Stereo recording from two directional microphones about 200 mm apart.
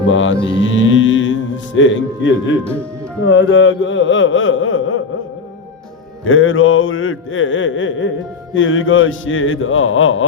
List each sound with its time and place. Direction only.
0.1 s music: 75° left (ahead or behind)
0.4 s speech: 70° left (ahead or behind); by 5.0 s 90° left
6.2 s a sound: 90° left